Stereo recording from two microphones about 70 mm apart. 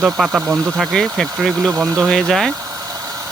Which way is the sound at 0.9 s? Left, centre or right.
Centre.